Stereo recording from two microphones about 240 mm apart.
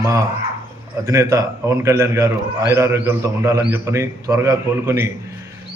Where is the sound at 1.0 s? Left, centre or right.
Centre.